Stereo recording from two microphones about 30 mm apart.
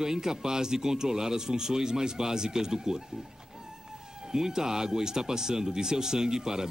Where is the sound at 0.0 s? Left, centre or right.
Centre.